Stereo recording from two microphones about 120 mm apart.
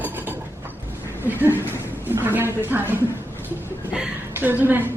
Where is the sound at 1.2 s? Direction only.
15° right (ahead or behind).